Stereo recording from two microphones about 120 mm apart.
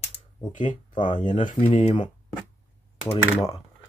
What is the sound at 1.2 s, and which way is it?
Speech, 90° left.